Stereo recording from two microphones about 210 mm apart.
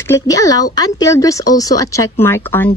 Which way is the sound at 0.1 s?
15° left (ahead or behind).